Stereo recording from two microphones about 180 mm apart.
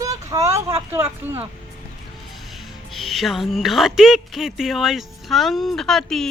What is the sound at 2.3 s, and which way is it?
Speech, centre (ahead or behind).